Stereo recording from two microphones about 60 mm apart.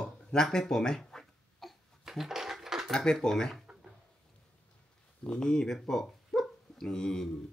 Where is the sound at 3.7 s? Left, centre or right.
Right.